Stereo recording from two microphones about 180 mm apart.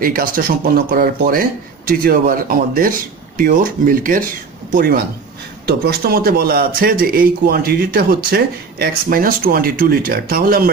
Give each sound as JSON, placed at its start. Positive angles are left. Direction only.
{"t": 0.0, "sound": "speech", "side_deg": -50}